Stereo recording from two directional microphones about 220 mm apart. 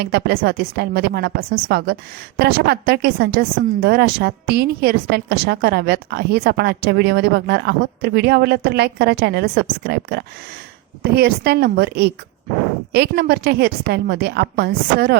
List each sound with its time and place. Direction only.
0.0 s a woman's voice: 50° right (ahead or behind)